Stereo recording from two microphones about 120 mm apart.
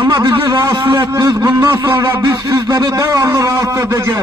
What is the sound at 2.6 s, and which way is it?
A man's voice, 30° right (ahead or behind).